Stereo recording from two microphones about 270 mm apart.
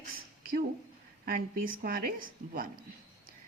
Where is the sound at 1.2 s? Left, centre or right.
Right.